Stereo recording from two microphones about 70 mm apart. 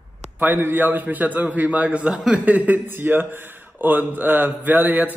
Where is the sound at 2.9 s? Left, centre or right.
Right.